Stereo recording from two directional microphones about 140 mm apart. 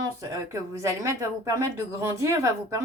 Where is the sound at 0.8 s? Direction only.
20° right (ahead or behind).